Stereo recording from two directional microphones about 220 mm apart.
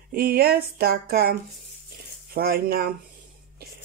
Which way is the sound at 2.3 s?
45° right (ahead or behind).